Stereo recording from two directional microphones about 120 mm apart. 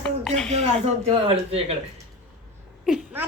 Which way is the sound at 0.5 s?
55° right (ahead or behind).